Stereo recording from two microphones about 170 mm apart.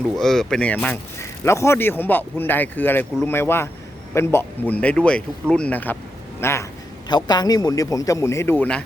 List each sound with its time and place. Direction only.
0.2 s speech: centre (ahead or behind)